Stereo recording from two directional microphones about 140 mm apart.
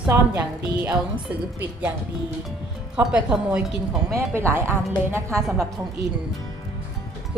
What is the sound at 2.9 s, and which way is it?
A woman's voice, 5° right (ahead or behind).